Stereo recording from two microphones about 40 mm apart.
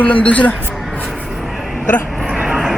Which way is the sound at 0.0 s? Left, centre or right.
Left.